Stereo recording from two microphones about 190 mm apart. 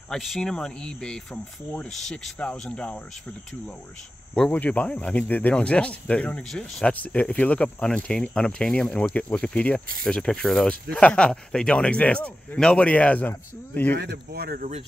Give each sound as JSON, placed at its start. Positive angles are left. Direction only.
{"t": 0.1, "sound": "speech", "side_deg": 0}
{"t": 4.3, "sound": "speech", "side_deg": 5}
{"t": 13.9, "sound": "speech", "side_deg": -60}